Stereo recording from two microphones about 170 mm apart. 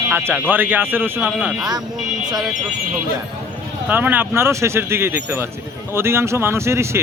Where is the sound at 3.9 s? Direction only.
10° right (ahead or behind).